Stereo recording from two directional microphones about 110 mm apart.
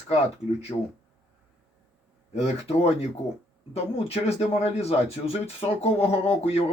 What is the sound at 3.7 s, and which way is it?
Speech, 65° left (ahead or behind).